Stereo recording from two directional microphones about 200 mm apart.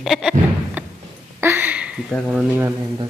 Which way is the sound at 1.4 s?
10° right (ahead or behind).